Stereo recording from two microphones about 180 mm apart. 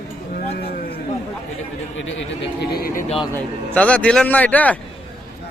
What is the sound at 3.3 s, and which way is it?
A man's voice, 5° left (ahead or behind).